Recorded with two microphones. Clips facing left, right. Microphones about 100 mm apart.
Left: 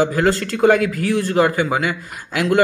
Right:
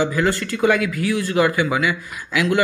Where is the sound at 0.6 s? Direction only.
45° left (ahead or behind).